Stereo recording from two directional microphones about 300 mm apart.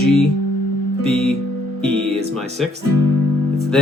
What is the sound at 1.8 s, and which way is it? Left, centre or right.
Speech, centre.